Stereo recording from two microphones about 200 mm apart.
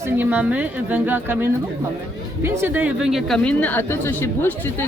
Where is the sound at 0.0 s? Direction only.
10° right (ahead or behind).